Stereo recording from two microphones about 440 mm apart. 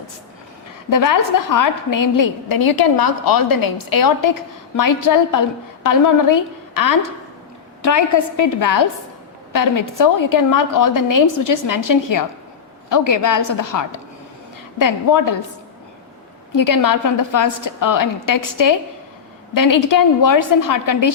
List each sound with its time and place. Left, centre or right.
0.9 s a woman's voice: left
16.6 s a woman's voice: left